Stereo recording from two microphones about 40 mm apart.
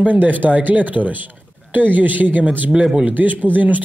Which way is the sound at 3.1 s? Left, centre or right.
Right.